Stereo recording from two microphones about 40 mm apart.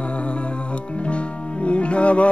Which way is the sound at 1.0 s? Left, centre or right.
Left.